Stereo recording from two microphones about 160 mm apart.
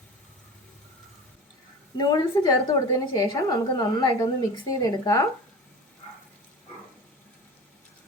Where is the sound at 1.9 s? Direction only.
25° left (ahead or behind).